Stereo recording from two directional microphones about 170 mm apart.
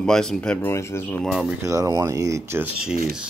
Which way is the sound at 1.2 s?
Centre (ahead or behind).